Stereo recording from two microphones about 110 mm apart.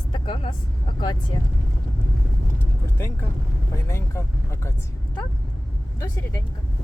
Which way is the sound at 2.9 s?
25° left (ahead or behind).